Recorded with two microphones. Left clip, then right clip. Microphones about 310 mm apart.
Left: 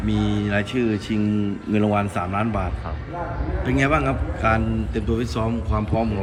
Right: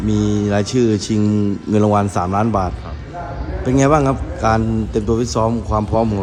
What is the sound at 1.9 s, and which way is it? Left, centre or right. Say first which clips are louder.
Speech: right 6 dB; left.